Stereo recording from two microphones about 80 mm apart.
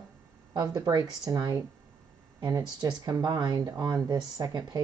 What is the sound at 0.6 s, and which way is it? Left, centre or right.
Speech, right.